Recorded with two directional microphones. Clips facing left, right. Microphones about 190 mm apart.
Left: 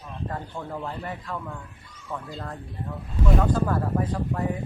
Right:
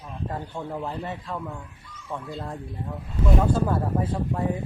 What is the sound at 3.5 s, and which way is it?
Speech, 25° right (ahead or behind).